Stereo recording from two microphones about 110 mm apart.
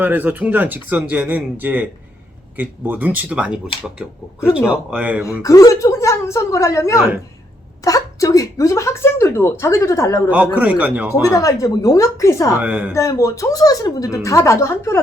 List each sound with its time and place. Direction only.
0.0 s speech: 15° right (ahead or behind)
5.2 s speech: 30° left (ahead or behind)
10.5 s speech: 15° right (ahead or behind)
11.1 s speech: 30° left (ahead or behind)
12.5 s speech: 15° right (ahead or behind)
12.9 s speech: 30° left (ahead or behind)